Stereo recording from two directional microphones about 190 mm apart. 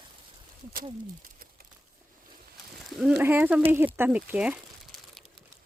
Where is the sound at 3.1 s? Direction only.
10° right (ahead or behind).